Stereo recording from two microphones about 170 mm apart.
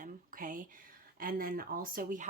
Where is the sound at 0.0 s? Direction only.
50° right (ahead or behind).